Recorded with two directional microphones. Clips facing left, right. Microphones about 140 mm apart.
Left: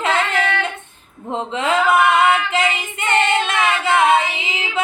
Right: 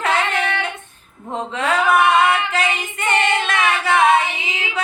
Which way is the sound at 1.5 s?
20° left (ahead or behind).